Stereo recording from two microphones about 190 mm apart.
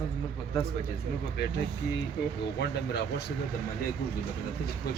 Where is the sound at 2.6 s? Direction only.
65° left (ahead or behind).